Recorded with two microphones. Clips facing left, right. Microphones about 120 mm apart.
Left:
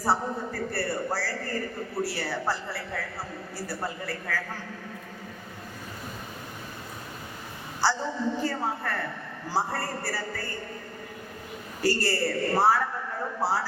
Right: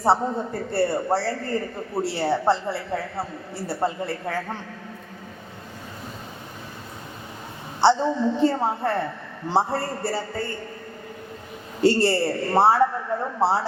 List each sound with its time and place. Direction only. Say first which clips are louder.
0.0 s a man's voice: right 6 dB; 25° right (ahead or behind)
7.8 s a man's voice: right 9 dB; 25° right (ahead or behind)
11.8 s a man's voice: right 7 dB; 25° right (ahead or behind)